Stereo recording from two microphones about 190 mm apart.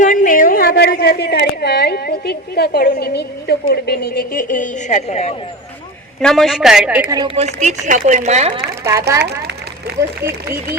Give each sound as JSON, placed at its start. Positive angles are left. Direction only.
{"t": 0.0, "sound": "a woman's voice", "side_deg": 45}
{"t": 6.1, "sound": "a woman's voice", "side_deg": 0}
{"t": 7.3, "sound": "speech", "side_deg": -35}
{"t": 8.8, "sound": "speech", "side_deg": -15}